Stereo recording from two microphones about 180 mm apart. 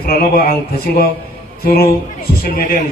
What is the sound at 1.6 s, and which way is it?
A man's voice, 55° left (ahead or behind).